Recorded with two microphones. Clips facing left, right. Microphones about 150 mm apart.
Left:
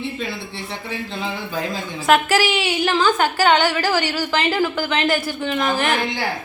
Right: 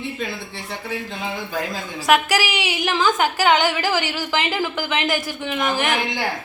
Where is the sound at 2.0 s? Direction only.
15° right (ahead or behind).